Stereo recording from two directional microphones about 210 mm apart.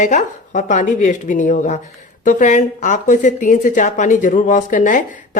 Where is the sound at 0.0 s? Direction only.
35° left (ahead or behind).